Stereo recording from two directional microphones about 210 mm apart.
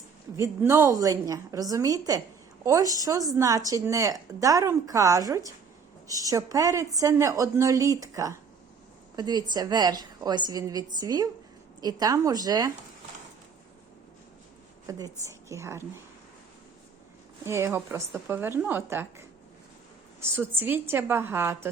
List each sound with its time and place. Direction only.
0.3 s a woman's voice: 10° right (ahead or behind)
14.8 s a woman's voice: 15° right (ahead or behind)
17.4 s a woman's voice: 10° right (ahead or behind)
20.3 s a woman's voice: 10° right (ahead or behind)